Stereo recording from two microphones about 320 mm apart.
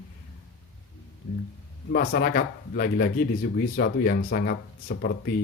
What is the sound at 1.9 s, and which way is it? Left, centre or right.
Speech, left.